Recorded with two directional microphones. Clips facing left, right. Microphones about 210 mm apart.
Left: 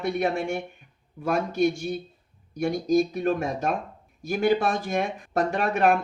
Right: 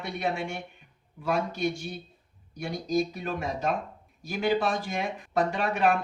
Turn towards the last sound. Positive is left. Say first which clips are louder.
# left 3 dB
turn(degrees=45)  # may be behind; listen again after turning